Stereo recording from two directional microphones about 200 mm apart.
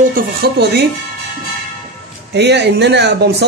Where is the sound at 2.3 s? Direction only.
60° right (ahead or behind).